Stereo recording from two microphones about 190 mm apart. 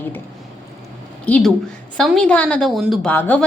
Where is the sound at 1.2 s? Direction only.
5° left (ahead or behind).